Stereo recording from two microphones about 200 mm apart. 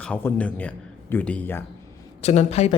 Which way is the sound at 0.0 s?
10° left (ahead or behind).